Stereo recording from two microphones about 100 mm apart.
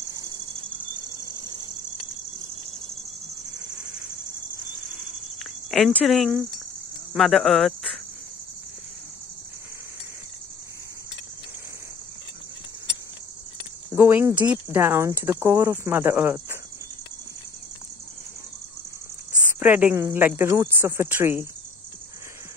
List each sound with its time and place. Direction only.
1.3 s cricket: 50° right (ahead or behind)
4.9 s cricket: centre (ahead or behind)
13.9 s speech: 25° right (ahead or behind)
14.3 s speech: 45° right (ahead or behind)
14.7 s speech: 25° right (ahead or behind)
19.4 s a sound: 15° right (ahead or behind)
20.0 s speech: 20° right (ahead or behind)